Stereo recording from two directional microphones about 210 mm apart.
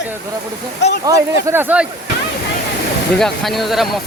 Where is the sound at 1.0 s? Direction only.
10° right (ahead or behind).